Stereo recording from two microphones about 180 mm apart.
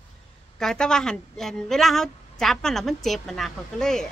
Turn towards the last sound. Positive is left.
turn(degrees=5)  # may be behind; listen again after turning